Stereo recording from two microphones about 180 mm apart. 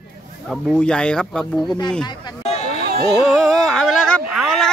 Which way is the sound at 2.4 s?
35° left (ahead or behind).